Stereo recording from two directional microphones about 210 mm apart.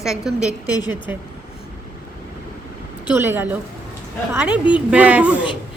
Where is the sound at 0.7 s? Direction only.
20° left (ahead or behind).